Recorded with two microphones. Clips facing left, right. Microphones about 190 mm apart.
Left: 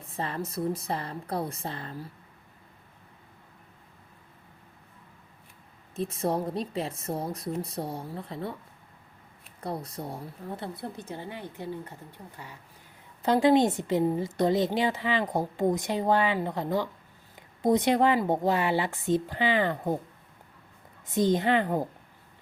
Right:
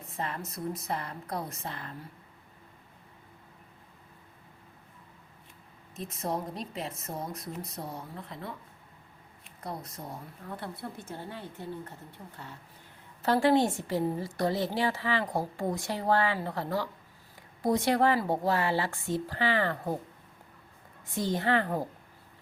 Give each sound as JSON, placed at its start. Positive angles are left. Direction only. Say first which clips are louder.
{"t": 0.2, "sound": "speech", "louder": "left 5 dB", "side_deg": 30}
{"t": 6.0, "sound": "speech", "louder": "left 5 dB", "side_deg": 30}
{"t": 9.6, "sound": "speech", "louder": "left 5 dB", "side_deg": 30}
{"t": 10.6, "sound": "a woman's voice", "louder": "left 3 dB", "side_deg": 20}
{"t": 21.2, "sound": "a woman's voice", "louder": "left 4 dB", "side_deg": 20}